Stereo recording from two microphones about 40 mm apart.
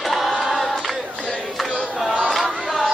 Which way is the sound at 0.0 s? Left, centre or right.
Centre.